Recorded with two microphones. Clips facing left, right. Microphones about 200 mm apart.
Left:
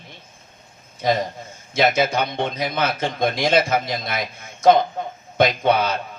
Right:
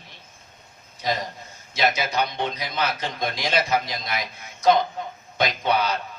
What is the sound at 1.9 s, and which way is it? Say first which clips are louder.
Speech: left 5 dB; 50° left (ahead or behind).